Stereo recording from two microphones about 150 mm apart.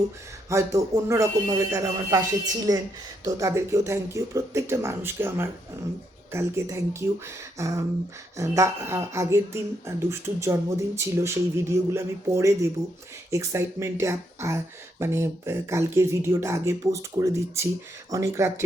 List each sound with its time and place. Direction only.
0.5 s speech: 20° right (ahead or behind)